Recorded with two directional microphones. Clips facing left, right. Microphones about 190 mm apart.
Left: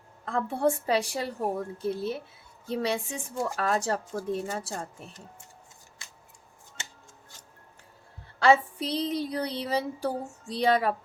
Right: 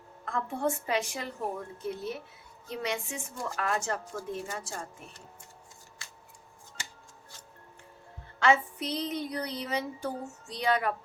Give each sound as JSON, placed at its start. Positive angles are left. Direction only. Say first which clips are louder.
{"t": 0.3, "sound": "a woman's voice", "louder": "left 5 dB", "side_deg": 35}
{"t": 8.4, "sound": "a woman's voice", "louder": "left 4 dB", "side_deg": 35}